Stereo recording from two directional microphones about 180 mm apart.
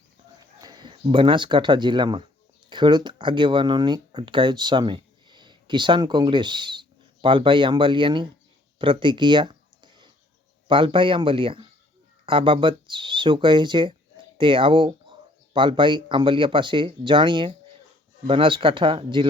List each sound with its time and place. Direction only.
0.6 s speech: 25° right (ahead or behind)
8.8 s a sound: 30° right (ahead or behind)
10.7 s speech: 25° right (ahead or behind)